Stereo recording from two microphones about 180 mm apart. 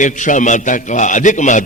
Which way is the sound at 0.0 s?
45° left (ahead or behind).